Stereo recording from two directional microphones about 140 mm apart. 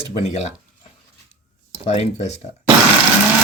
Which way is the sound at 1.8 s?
50° left (ahead or behind).